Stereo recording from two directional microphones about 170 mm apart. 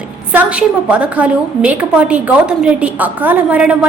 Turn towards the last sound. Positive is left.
turn(degrees=-10)  # may be behind; listen again after turning